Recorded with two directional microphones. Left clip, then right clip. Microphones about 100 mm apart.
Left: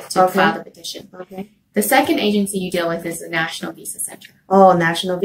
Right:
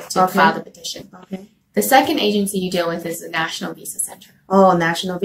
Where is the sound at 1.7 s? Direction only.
20° right (ahead or behind).